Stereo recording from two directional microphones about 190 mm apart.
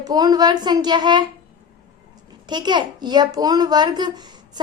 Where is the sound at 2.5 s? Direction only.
25° right (ahead or behind).